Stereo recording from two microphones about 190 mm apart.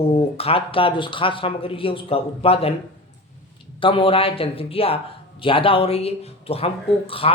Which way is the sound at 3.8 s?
30° left (ahead or behind).